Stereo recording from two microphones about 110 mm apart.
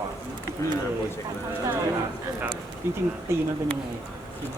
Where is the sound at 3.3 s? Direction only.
25° right (ahead or behind).